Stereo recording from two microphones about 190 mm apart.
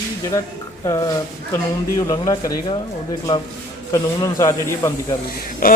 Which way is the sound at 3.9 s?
20° left (ahead or behind).